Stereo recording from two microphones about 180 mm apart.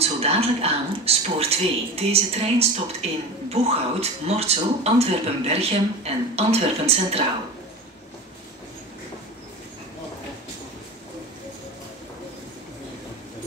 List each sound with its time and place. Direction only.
0.0 s speech: 35° right (ahead or behind)